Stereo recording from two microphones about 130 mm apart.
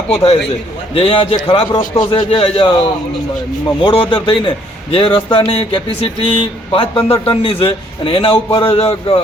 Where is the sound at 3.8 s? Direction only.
40° left (ahead or behind).